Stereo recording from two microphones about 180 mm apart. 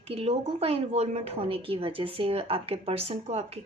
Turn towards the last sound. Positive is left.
turn(degrees=-35)  # may be behind; listen again after turning